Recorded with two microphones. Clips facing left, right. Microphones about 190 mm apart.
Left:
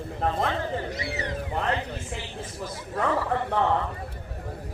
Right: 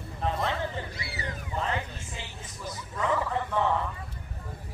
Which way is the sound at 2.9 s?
60° left (ahead or behind).